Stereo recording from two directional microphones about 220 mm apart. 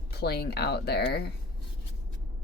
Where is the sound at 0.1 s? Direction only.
45° left (ahead or behind).